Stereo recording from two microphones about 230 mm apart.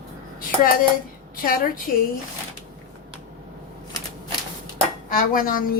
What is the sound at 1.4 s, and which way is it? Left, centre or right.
Speech, left.